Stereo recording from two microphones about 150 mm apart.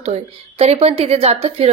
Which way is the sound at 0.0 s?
45° right (ahead or behind).